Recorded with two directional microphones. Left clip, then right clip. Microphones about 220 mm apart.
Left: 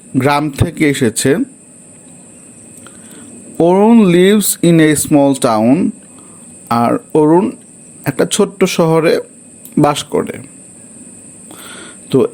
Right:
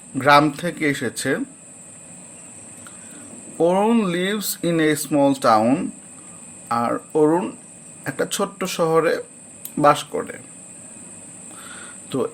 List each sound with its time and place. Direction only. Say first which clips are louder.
0.2 s speech: left 1 dB; 35° left (ahead or behind)
3.6 s speech: left 8 dB; 35° left (ahead or behind)
11.6 s a sound: left 7 dB; 35° left (ahead or behind)